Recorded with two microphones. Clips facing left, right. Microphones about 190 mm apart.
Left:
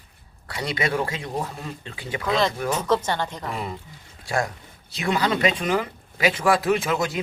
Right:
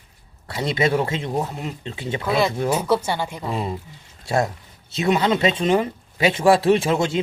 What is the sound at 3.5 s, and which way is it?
Speech, 25° right (ahead or behind).